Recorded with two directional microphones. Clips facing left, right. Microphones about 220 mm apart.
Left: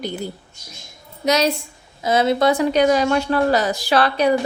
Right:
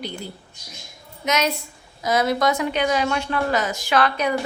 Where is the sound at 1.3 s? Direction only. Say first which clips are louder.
Left 5 dB; 35° left (ahead or behind).